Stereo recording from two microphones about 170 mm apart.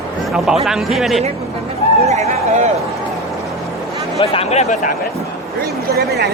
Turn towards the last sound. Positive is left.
turn(degrees=-70)  # may be behind; listen again after turning